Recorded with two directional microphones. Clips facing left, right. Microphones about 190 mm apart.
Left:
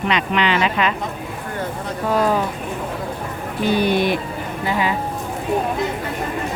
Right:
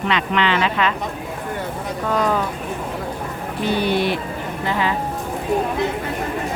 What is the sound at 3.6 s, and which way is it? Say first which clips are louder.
Speech: left 2 dB; 15° left (ahead or behind).